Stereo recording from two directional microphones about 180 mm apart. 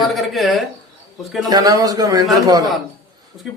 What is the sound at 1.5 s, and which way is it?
Speech, 20° right (ahead or behind).